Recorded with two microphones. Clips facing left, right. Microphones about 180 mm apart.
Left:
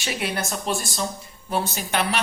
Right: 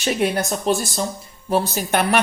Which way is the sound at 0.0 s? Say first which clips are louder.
Right 9 dB; 45° right (ahead or behind).